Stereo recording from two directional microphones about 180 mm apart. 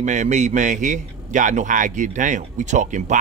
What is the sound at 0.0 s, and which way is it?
A man's voice, 40° right (ahead or behind).